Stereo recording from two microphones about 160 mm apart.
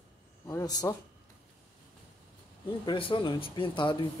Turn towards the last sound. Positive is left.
turn(degrees=30)  # may be behind; listen again after turning